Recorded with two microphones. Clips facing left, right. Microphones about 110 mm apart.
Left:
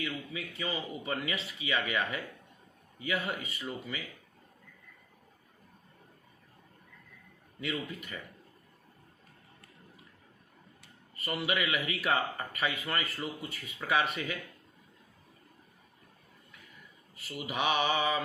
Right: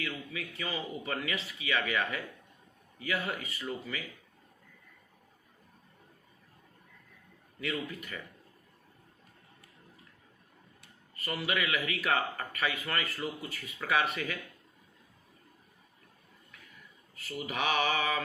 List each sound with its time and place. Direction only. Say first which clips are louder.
0.3 s speech: left 1 dB; 25° left (ahead or behind)
7.6 s speech: even; 25° left (ahead or behind)
11.1 s a sound: left 1 dB; 25° left (ahead or behind)
11.4 s speech: even; 25° left (ahead or behind)
17.5 s speech: left 1 dB; 25° left (ahead or behind)